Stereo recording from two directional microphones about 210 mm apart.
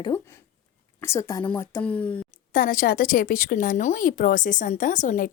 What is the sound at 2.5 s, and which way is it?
Speech, 40° left (ahead or behind).